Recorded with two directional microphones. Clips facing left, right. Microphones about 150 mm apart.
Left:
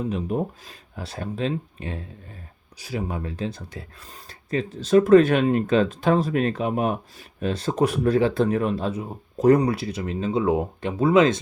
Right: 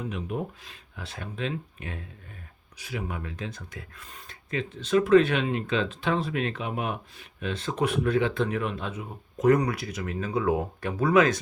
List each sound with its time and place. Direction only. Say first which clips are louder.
0.0 s speech: left 6 dB; 35° left (ahead or behind)